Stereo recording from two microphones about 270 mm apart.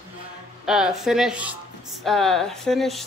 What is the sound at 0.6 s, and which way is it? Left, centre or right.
Speech, centre.